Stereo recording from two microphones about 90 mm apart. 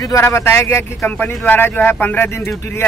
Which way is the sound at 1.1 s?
20° left (ahead or behind).